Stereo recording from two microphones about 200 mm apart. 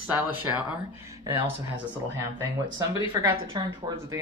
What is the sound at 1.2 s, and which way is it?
Speech, 20° right (ahead or behind).